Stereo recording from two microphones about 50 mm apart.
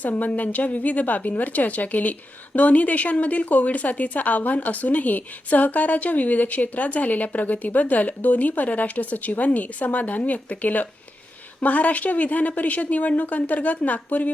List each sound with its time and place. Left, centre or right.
0.0 s a woman's voice: left